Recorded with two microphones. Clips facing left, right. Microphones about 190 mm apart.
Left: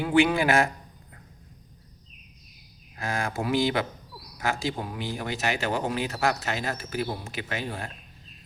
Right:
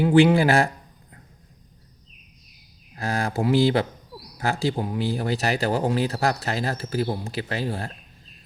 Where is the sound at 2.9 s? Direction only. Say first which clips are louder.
Right 4 dB; 35° right (ahead or behind).